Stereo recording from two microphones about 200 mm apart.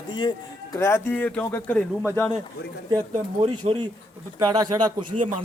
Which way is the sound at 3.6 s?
35° right (ahead or behind).